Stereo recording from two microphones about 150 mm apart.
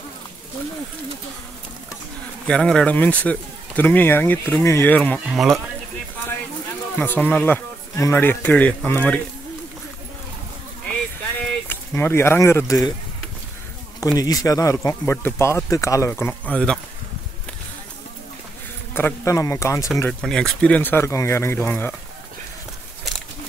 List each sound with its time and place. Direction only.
2.4 s speech: 5° left (ahead or behind)
5.3 s speech: centre (ahead or behind)
7.0 s speech: 10° left (ahead or behind)
10.9 s a sound: 10° left (ahead or behind)
14.1 s speech: 25° left (ahead or behind); by 16.8 s 5° left (ahead or behind)
18.9 s speech: 15° left (ahead or behind)
20.0 s speech: 5° left (ahead or behind)